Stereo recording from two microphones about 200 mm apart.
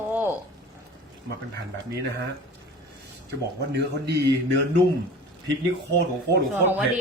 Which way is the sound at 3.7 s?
55° right (ahead or behind).